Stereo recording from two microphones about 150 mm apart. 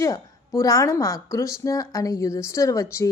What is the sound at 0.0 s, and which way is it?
A woman's voice, 20° left (ahead or behind).